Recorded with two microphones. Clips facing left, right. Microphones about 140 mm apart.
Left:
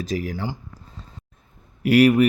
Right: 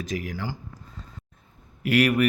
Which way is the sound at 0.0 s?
35° left (ahead or behind).